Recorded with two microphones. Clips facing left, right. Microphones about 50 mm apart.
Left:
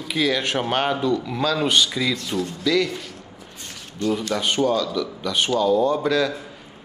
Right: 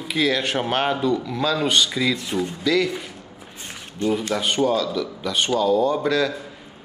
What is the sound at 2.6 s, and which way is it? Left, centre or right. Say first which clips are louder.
Speech: even; centre.